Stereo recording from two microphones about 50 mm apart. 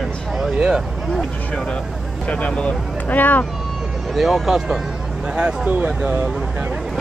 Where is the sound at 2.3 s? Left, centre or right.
Left.